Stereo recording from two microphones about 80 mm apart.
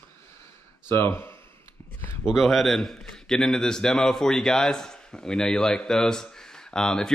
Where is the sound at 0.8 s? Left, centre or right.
Left.